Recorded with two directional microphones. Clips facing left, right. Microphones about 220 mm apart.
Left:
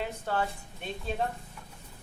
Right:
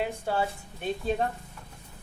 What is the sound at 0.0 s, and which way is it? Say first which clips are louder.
Speech: right 3 dB; 10° right (ahead or behind).